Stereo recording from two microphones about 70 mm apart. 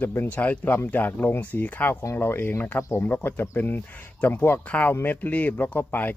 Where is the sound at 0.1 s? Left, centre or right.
Left.